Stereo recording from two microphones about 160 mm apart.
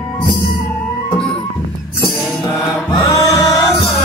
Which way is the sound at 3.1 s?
20° left (ahead or behind).